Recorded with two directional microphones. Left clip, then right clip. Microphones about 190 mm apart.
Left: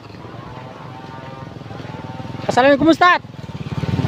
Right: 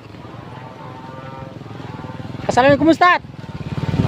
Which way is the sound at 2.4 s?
Centre (ahead or behind).